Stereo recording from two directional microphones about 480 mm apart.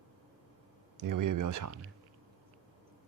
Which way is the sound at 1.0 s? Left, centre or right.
Right.